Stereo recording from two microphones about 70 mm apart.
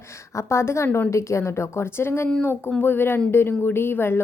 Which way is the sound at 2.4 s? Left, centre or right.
Left.